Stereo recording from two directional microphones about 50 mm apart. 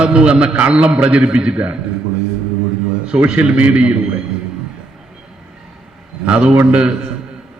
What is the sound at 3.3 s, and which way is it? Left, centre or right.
Speech, right.